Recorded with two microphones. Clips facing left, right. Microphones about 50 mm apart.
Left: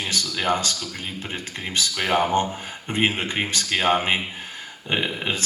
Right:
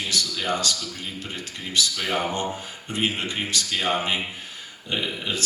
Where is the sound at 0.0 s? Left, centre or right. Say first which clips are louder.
Left 2 dB; left.